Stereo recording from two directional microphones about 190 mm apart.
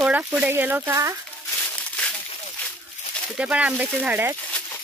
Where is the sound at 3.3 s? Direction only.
5° right (ahead or behind).